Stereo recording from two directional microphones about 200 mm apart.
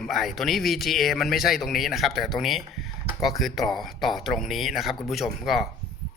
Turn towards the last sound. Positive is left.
turn(degrees=0)  # may be behind; listen again after turning